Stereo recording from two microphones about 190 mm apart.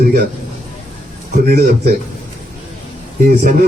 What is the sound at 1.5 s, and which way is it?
Speech, 50° right (ahead or behind).